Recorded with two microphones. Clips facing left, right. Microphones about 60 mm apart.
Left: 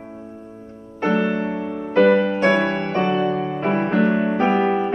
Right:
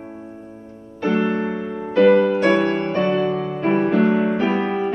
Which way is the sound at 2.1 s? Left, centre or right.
Left.